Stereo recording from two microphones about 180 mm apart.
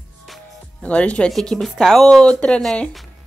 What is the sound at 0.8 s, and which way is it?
Speech, 5° left (ahead or behind).